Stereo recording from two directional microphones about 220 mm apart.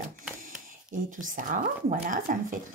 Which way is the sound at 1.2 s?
35° right (ahead or behind).